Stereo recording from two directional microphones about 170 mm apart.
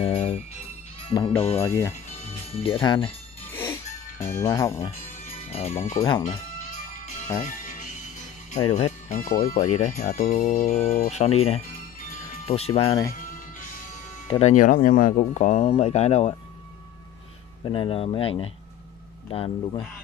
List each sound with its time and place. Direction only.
0.0 s jingle bell: 40° left (ahead or behind)
1.0 s speech: 30° left (ahead or behind)
1.6 s speech: 15° left (ahead or behind)
2.1 s music: 35° left (ahead or behind)
3.5 s music: 15° left (ahead or behind)
5.0 s music: 40° left (ahead or behind)
8.7 s speech: 45° left (ahead or behind)
14.4 s speech: 50° left (ahead or behind)
17.6 s speech: 35° left (ahead or behind)